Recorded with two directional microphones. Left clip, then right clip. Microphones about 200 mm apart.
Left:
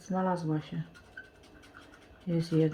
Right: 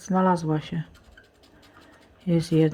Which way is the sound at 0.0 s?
35° right (ahead or behind).